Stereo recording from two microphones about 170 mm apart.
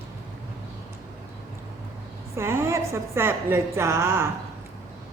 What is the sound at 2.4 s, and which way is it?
A woman's voice, 15° right (ahead or behind).